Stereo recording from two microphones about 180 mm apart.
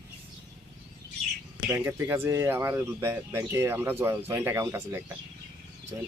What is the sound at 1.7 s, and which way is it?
Speech, 15° right (ahead or behind).